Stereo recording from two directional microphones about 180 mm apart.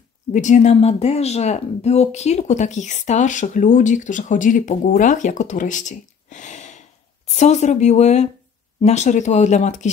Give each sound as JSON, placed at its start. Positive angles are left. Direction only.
{"t": 0.3, "sound": "speech", "side_deg": 45}